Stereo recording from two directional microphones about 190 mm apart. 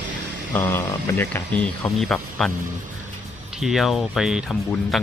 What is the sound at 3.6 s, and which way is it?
Speech, centre (ahead or behind).